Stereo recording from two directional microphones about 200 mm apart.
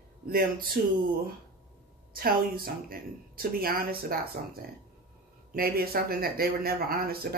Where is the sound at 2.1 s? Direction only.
50° right (ahead or behind).